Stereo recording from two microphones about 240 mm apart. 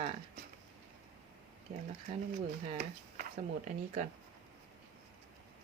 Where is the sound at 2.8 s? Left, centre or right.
Right.